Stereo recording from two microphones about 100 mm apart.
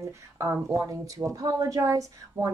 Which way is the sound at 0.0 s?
30° right (ahead or behind).